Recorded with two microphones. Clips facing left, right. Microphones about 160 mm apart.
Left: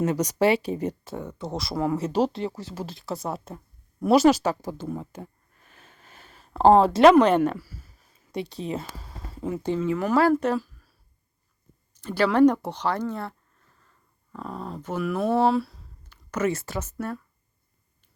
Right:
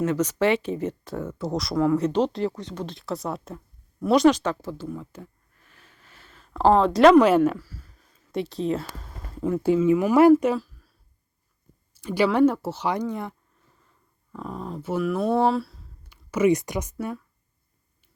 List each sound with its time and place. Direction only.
0.0 s speech: 15° left (ahead or behind)
1.4 s speech: centre (ahead or behind)
5.2 s a sound: 25° left (ahead or behind)
6.4 s a sound: 35° left (ahead or behind)
6.8 s speech: 5° left (ahead or behind)
7.6 s a sound: 10° left (ahead or behind)
8.3 s speech: centre (ahead or behind)
9.6 s speech: 10° right (ahead or behind)
10.3 s a sound: 5° right (ahead or behind)
11.9 s speech: 10° right (ahead or behind)
14.3 s speech: centre (ahead or behind)
16.0 s speech: 10° right (ahead or behind)